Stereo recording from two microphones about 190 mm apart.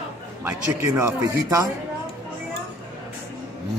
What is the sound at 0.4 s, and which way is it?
Speech, 15° right (ahead or behind).